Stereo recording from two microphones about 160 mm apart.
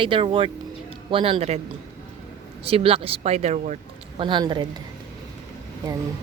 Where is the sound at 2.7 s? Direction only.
35° right (ahead or behind).